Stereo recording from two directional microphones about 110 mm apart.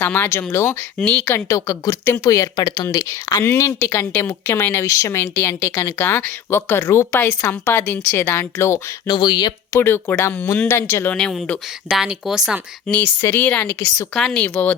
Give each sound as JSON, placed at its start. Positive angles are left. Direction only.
{"t": 0.0, "sound": "speech", "side_deg": 20}
{"t": 0.9, "sound": "speech", "side_deg": 10}
{"t": 1.2, "sound": "speech", "side_deg": 25}
{"t": 9.0, "sound": "speech", "side_deg": 40}
{"t": 9.7, "sound": "speech", "side_deg": 20}
{"t": 11.1, "sound": "speech", "side_deg": 5}
{"t": 13.2, "sound": "speech", "side_deg": 15}
{"t": 13.7, "sound": "speech", "side_deg": 30}
{"t": 14.2, "sound": "speech", "side_deg": 5}